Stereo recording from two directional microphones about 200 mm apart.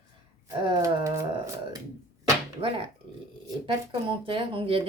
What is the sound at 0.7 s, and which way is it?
Speech, 15° right (ahead or behind).